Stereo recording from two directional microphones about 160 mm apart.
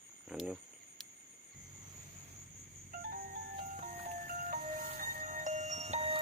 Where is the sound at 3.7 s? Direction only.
55° right (ahead or behind).